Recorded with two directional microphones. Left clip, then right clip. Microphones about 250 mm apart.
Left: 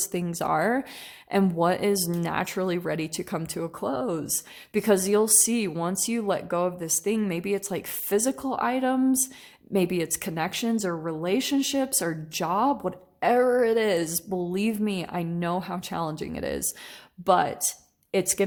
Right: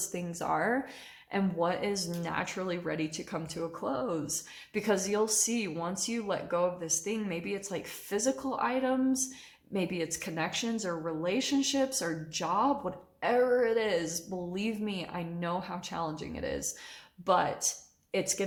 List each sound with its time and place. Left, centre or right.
0.1 s speech: left